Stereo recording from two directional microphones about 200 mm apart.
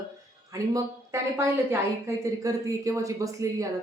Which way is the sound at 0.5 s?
15° right (ahead or behind).